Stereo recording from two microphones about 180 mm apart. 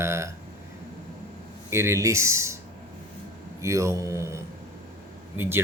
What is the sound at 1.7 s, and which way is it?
Speech, 15° right (ahead or behind).